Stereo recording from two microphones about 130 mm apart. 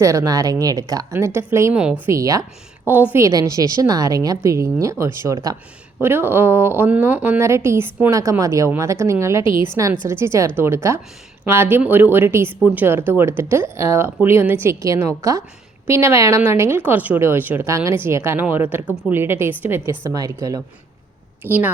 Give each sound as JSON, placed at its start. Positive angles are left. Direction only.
{"t": 0.0, "sound": "speech", "side_deg": -25}
{"t": 1.7, "sound": "speech", "side_deg": -10}
{"t": 2.0, "sound": "speech", "side_deg": -25}
{"t": 21.4, "sound": "speech", "side_deg": -15}